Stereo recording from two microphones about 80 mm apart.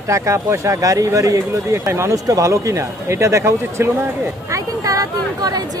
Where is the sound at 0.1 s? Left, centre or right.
Right.